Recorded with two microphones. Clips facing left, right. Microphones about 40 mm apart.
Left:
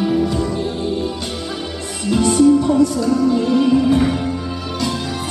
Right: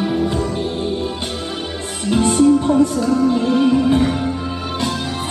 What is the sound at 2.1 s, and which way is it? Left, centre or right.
Music, right.